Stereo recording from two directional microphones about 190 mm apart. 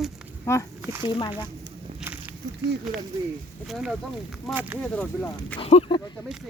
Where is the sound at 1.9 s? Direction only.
5° right (ahead or behind).